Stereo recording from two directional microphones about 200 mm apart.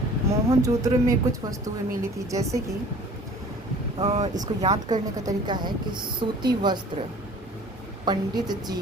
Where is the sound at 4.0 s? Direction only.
35° right (ahead or behind).